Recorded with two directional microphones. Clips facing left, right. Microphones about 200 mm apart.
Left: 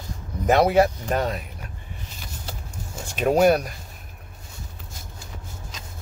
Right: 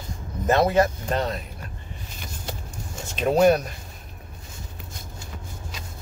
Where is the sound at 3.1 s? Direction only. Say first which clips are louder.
Even; 10° left (ahead or behind).